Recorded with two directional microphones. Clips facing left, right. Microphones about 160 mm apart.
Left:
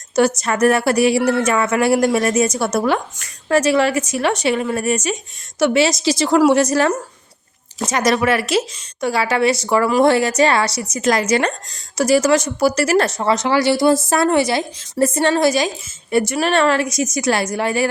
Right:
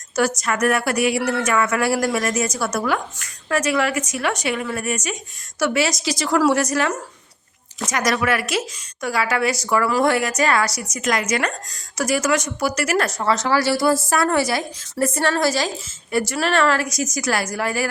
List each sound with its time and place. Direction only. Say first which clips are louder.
0.2 s a woman's voice: left 5 dB; 25° left (ahead or behind)